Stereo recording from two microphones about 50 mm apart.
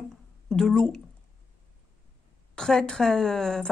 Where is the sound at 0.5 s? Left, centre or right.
Centre.